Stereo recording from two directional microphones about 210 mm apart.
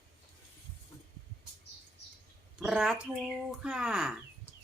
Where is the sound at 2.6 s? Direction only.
5° right (ahead or behind).